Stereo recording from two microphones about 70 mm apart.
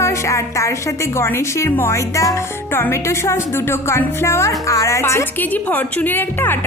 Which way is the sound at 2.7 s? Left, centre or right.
Left.